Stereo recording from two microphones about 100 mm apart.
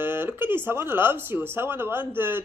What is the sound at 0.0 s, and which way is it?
Speech, 20° right (ahead or behind).